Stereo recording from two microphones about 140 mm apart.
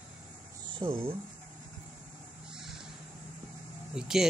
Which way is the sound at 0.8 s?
30° right (ahead or behind).